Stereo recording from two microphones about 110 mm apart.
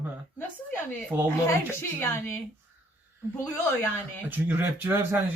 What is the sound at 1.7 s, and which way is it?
Speech, 20° left (ahead or behind).